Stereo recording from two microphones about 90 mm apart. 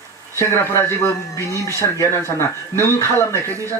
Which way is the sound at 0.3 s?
30° left (ahead or behind).